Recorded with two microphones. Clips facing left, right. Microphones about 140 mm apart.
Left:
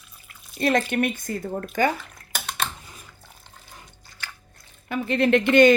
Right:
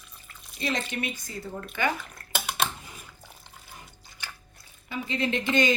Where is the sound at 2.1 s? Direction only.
5° right (ahead or behind).